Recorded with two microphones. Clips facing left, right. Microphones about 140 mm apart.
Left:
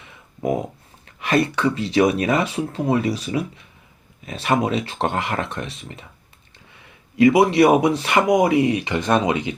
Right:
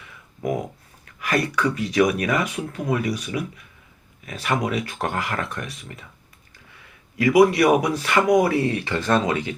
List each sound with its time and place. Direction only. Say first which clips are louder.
0.0 s a sound: left 3 dB; 25° left (ahead or behind)
1.0 s speech: left 4 dB; 25° left (ahead or behind)
7.2 s speech: left 2 dB; 25° left (ahead or behind)